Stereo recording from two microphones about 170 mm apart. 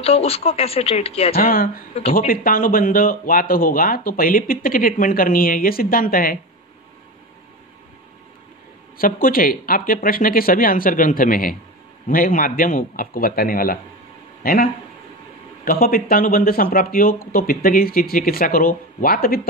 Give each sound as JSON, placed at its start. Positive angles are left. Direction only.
{"t": 0.0, "sound": "speech", "side_deg": 35}
{"t": 1.4, "sound": "speech", "side_deg": 60}
{"t": 8.9, "sound": "a man's voice", "side_deg": 55}